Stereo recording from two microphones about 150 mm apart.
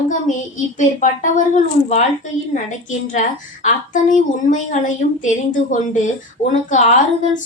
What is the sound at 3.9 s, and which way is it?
A woman's voice, 60° left (ahead or behind).